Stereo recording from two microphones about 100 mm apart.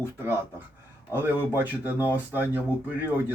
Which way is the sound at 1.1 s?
20° right (ahead or behind).